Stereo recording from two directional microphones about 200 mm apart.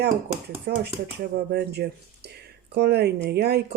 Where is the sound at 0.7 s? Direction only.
45° right (ahead or behind).